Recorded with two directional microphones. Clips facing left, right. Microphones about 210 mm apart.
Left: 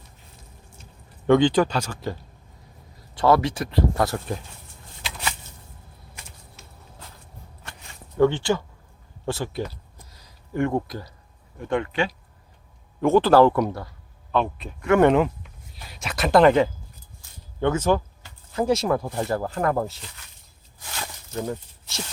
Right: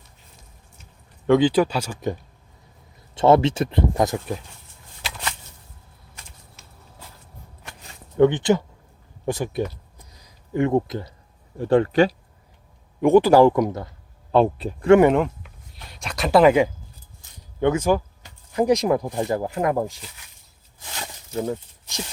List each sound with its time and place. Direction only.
1.3 s speech: 5° right (ahead or behind)
3.2 s speech: 25° right (ahead or behind)
8.2 s speech: 20° right (ahead or behind)
11.5 s speech: 35° right (ahead or behind)
13.0 s speech: 15° right (ahead or behind)
14.3 s speech: 35° right (ahead or behind)
15.0 s speech: centre (ahead or behind)
20.7 s a sound: 20° right (ahead or behind)